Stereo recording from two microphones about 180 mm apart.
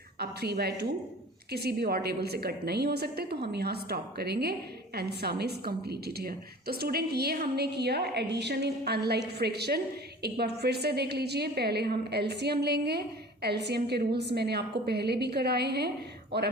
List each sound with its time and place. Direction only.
0.2 s a woman's voice: 65° right (ahead or behind)